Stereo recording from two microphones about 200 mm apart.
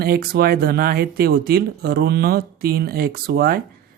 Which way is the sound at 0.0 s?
50° right (ahead or behind).